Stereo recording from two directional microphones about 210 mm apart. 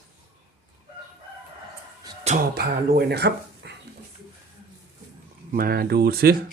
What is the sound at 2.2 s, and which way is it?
Speech, 45° right (ahead or behind).